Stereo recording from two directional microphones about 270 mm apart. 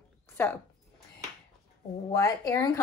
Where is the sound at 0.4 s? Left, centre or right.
Centre.